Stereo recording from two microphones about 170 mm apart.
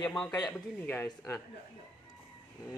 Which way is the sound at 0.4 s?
5° left (ahead or behind).